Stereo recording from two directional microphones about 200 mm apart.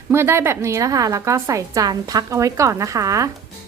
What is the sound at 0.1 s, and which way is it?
A woman's voice, 10° right (ahead or behind).